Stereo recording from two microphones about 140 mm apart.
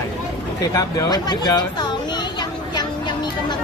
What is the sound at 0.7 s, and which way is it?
Speech, 25° left (ahead or behind).